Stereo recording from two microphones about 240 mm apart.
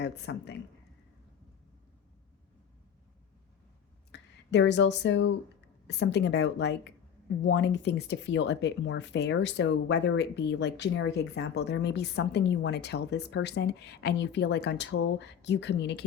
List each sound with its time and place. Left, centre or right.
0.0 s speech: left
4.1 s speech: left